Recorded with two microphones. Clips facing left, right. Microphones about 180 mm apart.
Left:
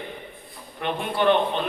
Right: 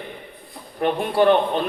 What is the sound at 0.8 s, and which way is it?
Speech, 40° right (ahead or behind).